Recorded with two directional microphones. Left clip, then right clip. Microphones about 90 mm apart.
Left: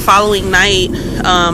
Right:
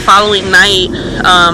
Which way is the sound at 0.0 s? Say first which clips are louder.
Right 3 dB; 20° left (ahead or behind).